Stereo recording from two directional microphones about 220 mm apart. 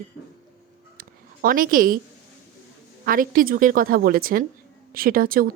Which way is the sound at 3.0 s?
40° right (ahead or behind).